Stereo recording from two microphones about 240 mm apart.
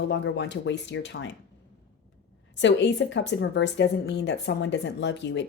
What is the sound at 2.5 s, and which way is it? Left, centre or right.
A woman's voice, left.